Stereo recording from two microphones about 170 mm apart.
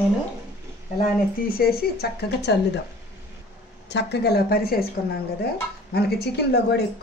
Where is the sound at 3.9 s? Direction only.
80° left.